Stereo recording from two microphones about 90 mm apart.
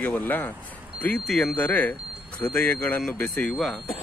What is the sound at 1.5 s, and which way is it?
A man's voice, 15° left (ahead or behind).